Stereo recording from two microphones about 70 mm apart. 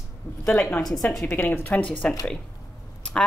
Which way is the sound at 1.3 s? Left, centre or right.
Left.